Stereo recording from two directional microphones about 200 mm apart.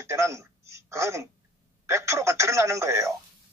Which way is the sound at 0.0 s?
15° right (ahead or behind).